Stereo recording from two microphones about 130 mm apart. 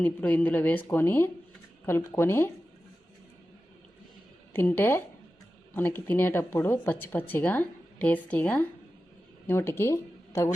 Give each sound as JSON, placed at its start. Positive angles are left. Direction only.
{"t": 0.0, "sound": "speech", "side_deg": 15}
{"t": 4.5, "sound": "speech", "side_deg": 15}